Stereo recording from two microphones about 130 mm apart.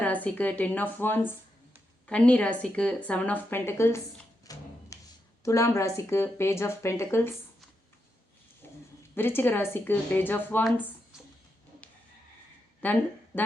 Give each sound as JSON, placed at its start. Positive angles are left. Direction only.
{"t": 0.0, "sound": "a woman's voice", "side_deg": 15}
{"t": 4.5, "sound": "music", "side_deg": 30}
{"t": 4.9, "sound": "a sound", "side_deg": 25}
{"t": 5.4, "sound": "speech", "side_deg": 25}
{"t": 9.1, "sound": "a woman's voice", "side_deg": 15}
{"t": 12.8, "sound": "speech", "side_deg": 15}